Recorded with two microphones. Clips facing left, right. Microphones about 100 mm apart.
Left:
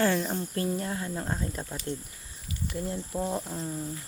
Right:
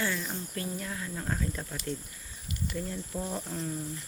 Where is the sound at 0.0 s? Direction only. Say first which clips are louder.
Left 7 dB; 35° left (ahead or behind); by 3.8 s 15° left (ahead or behind).